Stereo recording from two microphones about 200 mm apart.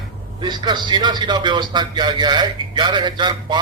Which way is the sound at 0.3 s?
20° right (ahead or behind).